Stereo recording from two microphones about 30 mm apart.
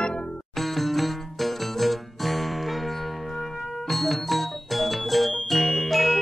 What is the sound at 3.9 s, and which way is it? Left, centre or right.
Music, centre.